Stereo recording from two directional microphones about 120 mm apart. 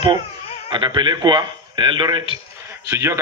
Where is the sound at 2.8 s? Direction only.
20° right (ahead or behind).